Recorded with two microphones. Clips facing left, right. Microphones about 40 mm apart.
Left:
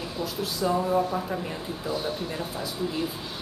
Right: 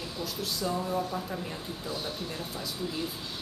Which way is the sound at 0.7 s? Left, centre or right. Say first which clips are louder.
Left 8 dB; left.